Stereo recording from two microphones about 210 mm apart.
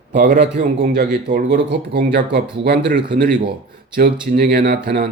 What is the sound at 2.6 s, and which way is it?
Speech, 55° right (ahead or behind).